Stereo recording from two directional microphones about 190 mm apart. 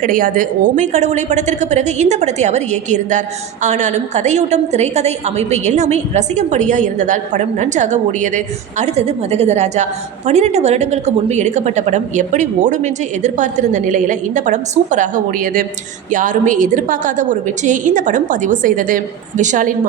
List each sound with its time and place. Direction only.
0.0 s a woman's voice: 45° right (ahead or behind)